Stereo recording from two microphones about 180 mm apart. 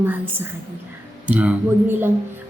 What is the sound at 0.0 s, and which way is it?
Speech, 10° right (ahead or behind).